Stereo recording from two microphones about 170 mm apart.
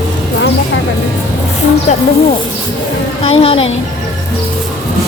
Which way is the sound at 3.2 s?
35° left (ahead or behind).